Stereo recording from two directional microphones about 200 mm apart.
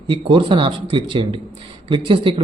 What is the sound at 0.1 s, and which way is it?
A man's voice, 25° right (ahead or behind).